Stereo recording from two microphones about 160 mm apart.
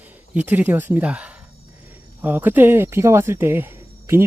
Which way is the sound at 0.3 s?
10° right (ahead or behind).